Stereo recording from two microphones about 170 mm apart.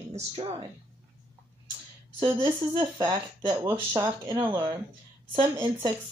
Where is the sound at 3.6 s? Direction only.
15° right (ahead or behind).